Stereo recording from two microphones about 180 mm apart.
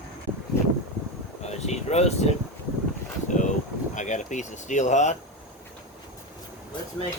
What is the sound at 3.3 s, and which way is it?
Boat, 45° left (ahead or behind).